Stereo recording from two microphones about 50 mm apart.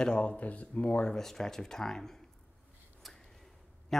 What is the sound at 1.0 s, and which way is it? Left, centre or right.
Speech, centre.